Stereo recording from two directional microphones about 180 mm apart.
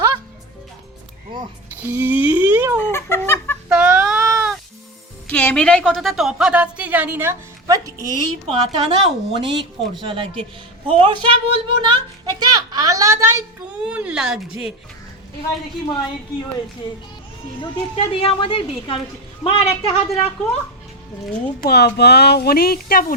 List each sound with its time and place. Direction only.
1.8 s a sound: 10° right (ahead or behind)
2.7 s chicken: 15° left (ahead or behind)
3.7 s cat: 5° right (ahead or behind)
5.3 s a woman's voice: 5° left (ahead or behind); by 8.0 s 20° right (ahead or behind)
8.4 s a woman's voice: 30° right (ahead or behind); by 14.7 s 5° right (ahead or behind)
17.6 s speech: 30° left (ahead or behind)
21.6 s a woman's voice: 65° left (ahead or behind)